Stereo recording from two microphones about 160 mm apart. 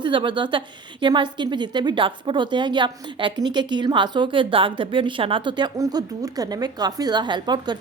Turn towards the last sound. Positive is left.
turn(degrees=-25)  # may be behind; listen again after turning